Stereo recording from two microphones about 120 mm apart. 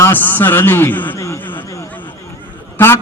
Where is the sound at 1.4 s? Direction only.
15° left (ahead or behind).